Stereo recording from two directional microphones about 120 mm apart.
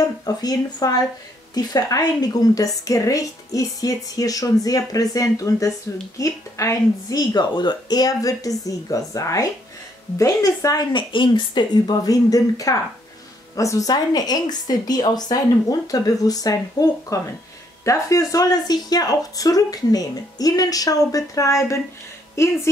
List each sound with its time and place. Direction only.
0.0 s a woman's voice: 35° left (ahead or behind)
10.9 s a woman's voice: 45° left (ahead or behind); by 22.5 s 25° left (ahead or behind)